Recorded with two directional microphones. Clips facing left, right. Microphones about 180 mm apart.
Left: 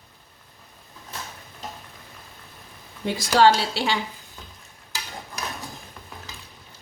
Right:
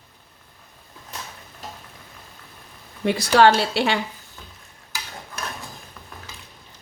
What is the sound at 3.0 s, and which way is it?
Speech, 65° right (ahead or behind).